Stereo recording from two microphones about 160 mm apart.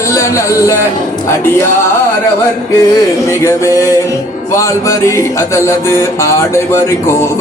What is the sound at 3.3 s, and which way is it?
Music, 20° left (ahead or behind).